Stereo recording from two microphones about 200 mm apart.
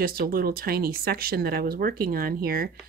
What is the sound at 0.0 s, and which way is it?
Speech, 50° right (ahead or behind).